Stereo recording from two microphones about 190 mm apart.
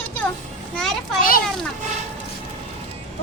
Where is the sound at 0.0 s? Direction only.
10° left (ahead or behind).